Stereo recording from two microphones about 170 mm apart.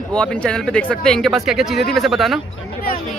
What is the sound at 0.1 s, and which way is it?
Speech, 5° left (ahead or behind).